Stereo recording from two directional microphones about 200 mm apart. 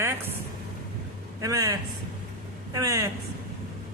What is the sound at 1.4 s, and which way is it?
Speech, 15° right (ahead or behind).